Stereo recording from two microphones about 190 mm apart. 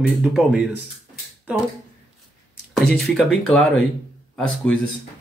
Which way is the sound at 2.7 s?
5° left (ahead or behind).